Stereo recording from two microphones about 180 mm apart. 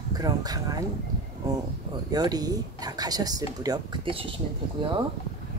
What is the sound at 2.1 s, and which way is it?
A woman's voice, 20° right (ahead or behind).